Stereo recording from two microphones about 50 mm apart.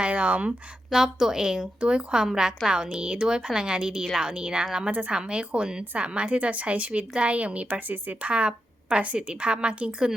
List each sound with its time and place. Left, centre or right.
0.0 s a sound: right
0.9 s a woman's voice: centre
4.0 s speech: centre
4.3 s a woman's voice: centre
4.9 s a woman's voice: right